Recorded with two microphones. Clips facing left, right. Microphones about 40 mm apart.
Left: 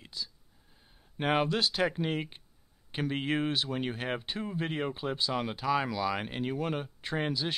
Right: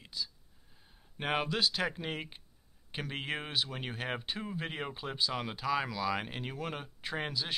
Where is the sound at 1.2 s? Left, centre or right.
Centre.